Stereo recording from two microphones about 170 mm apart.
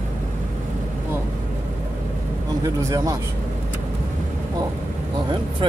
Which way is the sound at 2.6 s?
20° right (ahead or behind).